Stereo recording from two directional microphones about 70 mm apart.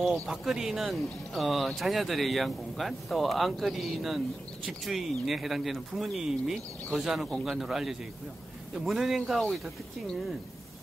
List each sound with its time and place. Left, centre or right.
0.3 s speech: centre